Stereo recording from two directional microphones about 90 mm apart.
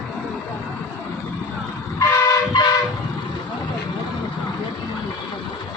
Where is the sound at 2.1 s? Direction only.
35° left (ahead or behind).